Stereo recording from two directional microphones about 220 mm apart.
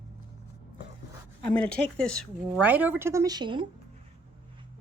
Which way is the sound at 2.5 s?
5° right (ahead or behind).